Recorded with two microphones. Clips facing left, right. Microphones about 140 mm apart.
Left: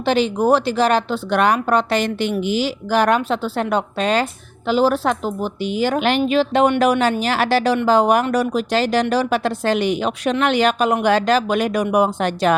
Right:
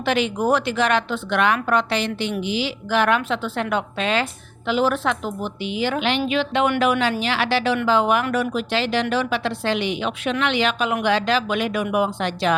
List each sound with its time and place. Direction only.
0.0 s a woman's voice: 30° left (ahead or behind)